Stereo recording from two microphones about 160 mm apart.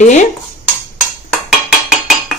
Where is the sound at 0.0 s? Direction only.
50° left (ahead or behind).